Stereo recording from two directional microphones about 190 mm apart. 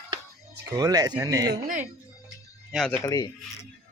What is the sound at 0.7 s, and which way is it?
Speech, 20° right (ahead or behind).